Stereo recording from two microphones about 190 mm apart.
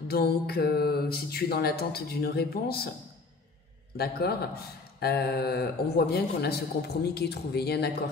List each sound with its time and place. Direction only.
0.1 s speech: 55° left (ahead or behind)
3.9 s speech: 55° left (ahead or behind)